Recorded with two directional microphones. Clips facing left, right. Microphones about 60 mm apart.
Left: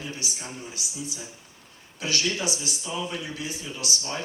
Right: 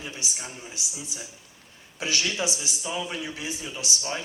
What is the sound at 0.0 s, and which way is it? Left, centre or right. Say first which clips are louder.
Speech: left 1 dB; right.